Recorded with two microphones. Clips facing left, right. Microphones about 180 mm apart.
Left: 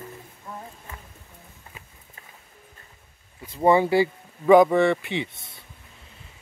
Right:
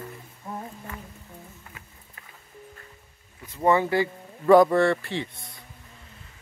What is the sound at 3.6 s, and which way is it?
Speech, 15° left (ahead or behind).